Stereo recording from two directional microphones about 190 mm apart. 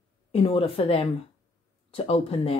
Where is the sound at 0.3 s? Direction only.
30° left (ahead or behind).